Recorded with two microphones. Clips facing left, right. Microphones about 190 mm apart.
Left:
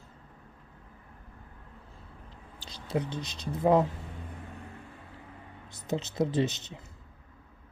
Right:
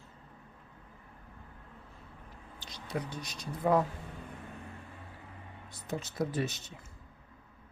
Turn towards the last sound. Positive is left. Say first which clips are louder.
# left 6 dB
turn(degrees=20)  # may be behind; listen again after turning